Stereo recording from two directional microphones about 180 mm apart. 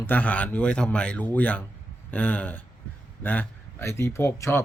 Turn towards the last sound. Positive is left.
turn(degrees=15)  # may be behind; listen again after turning